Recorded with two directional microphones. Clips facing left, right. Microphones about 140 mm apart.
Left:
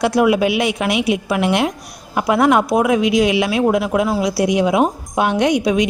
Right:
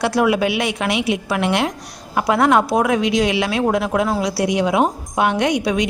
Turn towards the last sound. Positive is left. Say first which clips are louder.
# left 3 dB
turn(degrees=20)  # may be behind; listen again after turning